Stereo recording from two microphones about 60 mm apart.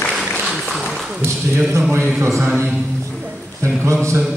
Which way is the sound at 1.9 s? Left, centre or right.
Right.